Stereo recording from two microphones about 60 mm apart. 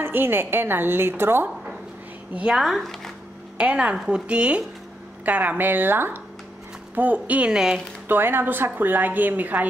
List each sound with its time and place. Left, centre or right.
0.0 s a woman's voice: right
2.5 s speech: centre
3.5 s a woman's voice: centre
7.5 s speech: centre
8.1 s a woman's voice: right